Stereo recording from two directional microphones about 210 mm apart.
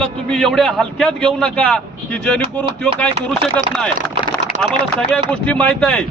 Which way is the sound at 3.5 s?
5° left (ahead or behind).